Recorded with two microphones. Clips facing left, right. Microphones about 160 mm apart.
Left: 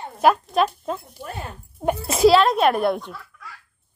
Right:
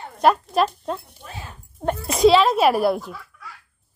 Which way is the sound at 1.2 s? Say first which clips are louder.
Left 9 dB; 60° left (ahead or behind).